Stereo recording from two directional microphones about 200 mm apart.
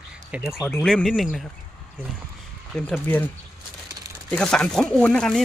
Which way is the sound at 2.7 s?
5° left (ahead or behind).